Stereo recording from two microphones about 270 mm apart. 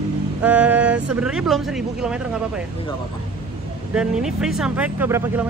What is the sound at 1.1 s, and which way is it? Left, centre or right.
Speech, centre.